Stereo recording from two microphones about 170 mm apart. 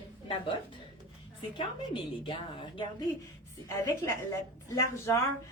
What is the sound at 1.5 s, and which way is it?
A woman's voice, 30° left (ahead or behind).